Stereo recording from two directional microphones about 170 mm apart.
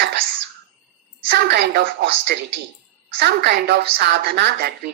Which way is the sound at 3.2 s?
75° right (ahead or behind).